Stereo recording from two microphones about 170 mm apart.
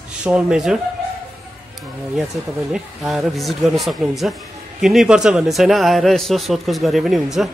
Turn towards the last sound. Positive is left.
turn(degrees=0)  # may be behind; listen again after turning